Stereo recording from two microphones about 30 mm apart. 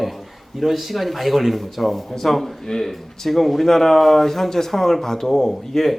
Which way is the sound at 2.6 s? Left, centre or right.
Centre.